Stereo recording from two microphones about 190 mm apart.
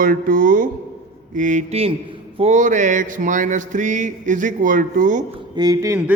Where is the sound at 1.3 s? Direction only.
40° right (ahead or behind).